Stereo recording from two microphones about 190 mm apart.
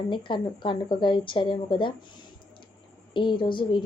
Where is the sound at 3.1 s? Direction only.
25° left (ahead or behind).